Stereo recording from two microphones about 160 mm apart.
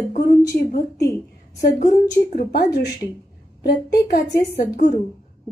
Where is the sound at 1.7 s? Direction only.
50° left (ahead or behind).